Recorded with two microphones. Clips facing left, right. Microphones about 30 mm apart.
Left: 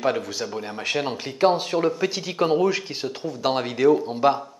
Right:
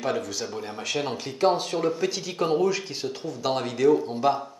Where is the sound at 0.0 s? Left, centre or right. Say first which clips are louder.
Left 4 dB; centre.